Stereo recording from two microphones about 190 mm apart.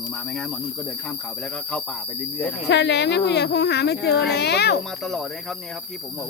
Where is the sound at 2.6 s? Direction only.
65° left (ahead or behind).